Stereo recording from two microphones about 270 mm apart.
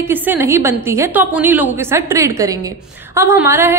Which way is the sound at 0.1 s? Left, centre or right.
Centre.